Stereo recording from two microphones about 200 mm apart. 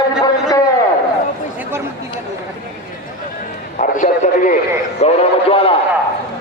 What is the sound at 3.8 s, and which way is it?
Radio, 35° left (ahead or behind).